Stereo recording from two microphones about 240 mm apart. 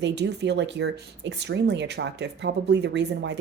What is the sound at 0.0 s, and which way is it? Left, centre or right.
A woman's voice, right.